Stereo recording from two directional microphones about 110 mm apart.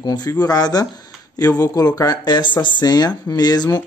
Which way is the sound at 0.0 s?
35° left (ahead or behind).